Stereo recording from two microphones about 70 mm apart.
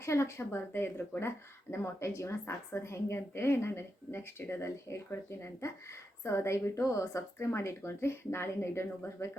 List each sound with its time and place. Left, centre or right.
0.0 s a woman's voice: left